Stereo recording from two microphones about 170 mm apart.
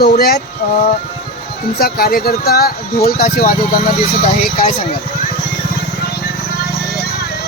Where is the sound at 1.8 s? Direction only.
60° left (ahead or behind).